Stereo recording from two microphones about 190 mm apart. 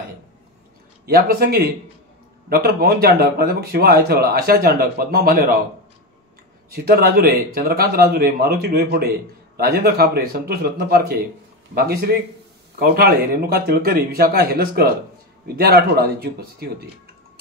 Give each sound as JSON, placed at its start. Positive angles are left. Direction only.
{"t": 1.0, "sound": "speech", "side_deg": -50}
{"t": 6.7, "sound": "speech", "side_deg": -50}